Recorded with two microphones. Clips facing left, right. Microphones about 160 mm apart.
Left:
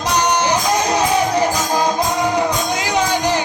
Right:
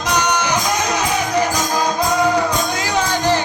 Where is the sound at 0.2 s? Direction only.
30° left (ahead or behind).